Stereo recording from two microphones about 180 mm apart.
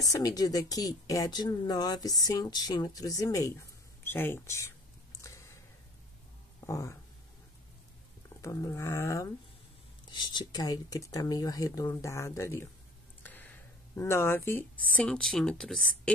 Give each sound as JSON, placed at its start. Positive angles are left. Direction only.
{"t": 0.0, "sound": "speech", "side_deg": 20}
{"t": 5.2, "sound": "a sound", "side_deg": 15}
{"t": 6.6, "sound": "speech", "side_deg": 15}
{"t": 8.4, "sound": "speech", "side_deg": 15}